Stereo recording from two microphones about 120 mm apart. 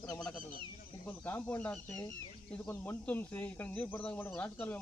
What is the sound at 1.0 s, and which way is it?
Speech, 15° left (ahead or behind).